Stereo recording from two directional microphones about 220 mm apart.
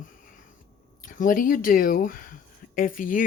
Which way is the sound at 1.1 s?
40° left (ahead or behind).